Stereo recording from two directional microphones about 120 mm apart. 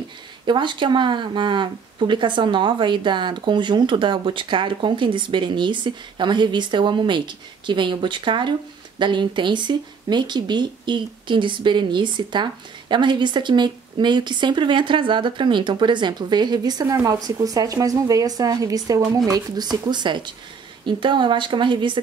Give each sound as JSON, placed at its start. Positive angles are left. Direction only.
{"t": 0.5, "sound": "speech", "side_deg": -40}